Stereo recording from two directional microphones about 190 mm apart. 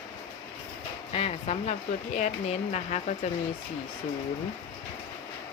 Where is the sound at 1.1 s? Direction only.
30° left (ahead or behind).